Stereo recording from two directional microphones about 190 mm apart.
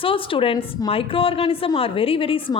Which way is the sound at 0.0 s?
30° left (ahead or behind).